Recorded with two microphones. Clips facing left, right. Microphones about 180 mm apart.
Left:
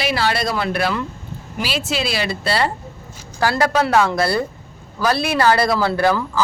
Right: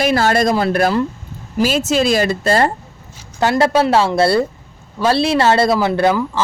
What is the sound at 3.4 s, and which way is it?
Speech, 25° right (ahead or behind).